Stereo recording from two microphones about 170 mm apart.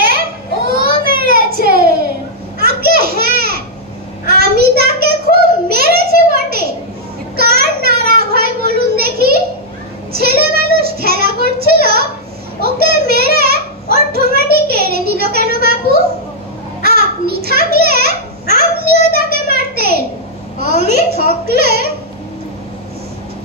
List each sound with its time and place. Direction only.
0.0 s child singing: 60° right (ahead or behind)
2.6 s a sound: 65° right (ahead or behind)
7.3 s child singing: 65° right (ahead or behind)
10.1 s child singing: 65° right (ahead or behind)
16.8 s a sound: 65° right (ahead or behind)
20.5 s babbling: 70° right (ahead or behind)